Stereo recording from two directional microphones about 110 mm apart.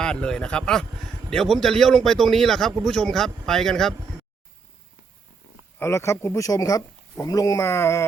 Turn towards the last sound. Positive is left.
turn(degrees=25)  # may be behind; listen again after turning